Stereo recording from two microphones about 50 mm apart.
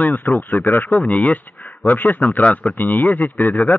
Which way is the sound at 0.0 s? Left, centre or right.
Left.